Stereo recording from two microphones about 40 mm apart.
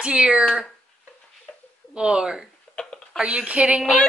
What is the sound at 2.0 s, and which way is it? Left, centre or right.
Speech, centre.